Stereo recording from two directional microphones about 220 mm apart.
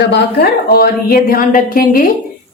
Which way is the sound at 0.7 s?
45° left (ahead or behind).